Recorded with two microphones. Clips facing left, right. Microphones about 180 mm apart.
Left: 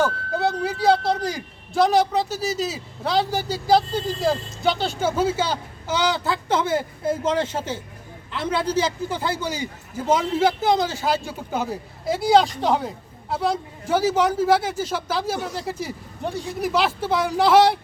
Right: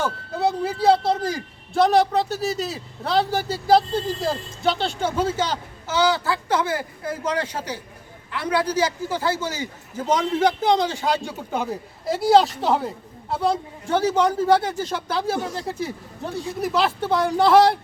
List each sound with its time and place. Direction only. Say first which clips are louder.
0.0 s a man's voice: left 1 dB; centre (ahead or behind)